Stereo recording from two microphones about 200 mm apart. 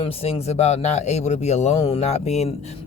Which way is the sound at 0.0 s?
30° left (ahead or behind).